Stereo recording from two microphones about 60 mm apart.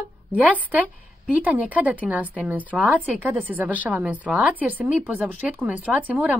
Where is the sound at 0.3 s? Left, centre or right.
Right.